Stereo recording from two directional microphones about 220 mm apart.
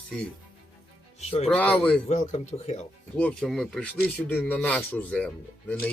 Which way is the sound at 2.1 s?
30° left (ahead or behind).